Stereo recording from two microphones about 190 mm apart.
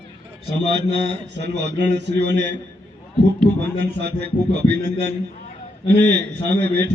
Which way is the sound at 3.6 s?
60° right (ahead or behind).